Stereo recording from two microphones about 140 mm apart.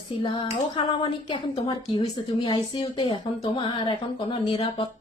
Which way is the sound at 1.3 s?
35° left (ahead or behind).